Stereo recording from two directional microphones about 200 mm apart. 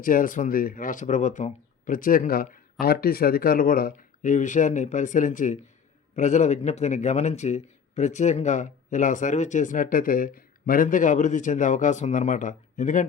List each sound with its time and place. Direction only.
0.0 s speech: 45° left (ahead or behind)